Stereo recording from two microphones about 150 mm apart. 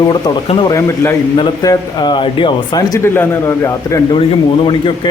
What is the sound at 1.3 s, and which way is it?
Speech, 30° left (ahead or behind).